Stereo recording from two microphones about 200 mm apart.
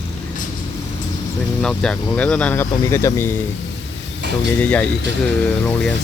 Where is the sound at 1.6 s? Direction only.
5° left (ahead or behind).